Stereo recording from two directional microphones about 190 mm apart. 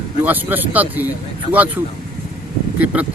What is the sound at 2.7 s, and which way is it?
Speech, 5° right (ahead or behind).